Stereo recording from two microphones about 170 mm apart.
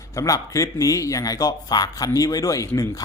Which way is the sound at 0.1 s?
20° left (ahead or behind).